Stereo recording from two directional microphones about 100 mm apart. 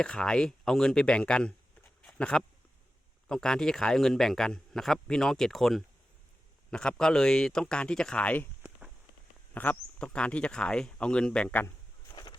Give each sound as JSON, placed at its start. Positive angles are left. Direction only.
{"t": 0.0, "sound": "a man's voice", "side_deg": 5}
{"t": 9.6, "sound": "speech", "side_deg": 15}
{"t": 12.1, "sound": "a sound", "side_deg": 45}